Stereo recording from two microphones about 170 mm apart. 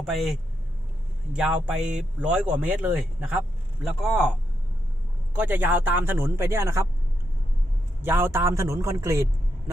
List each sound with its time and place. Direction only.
0.0 s speech: centre (ahead or behind); by 6.8 s 15° right (ahead or behind)
8.0 s speech: 15° right (ahead or behind)